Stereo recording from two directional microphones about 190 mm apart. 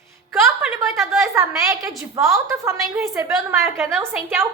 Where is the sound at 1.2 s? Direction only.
15° right (ahead or behind).